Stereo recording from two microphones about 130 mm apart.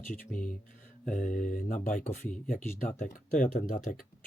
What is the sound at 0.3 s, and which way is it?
Speech, 90° left.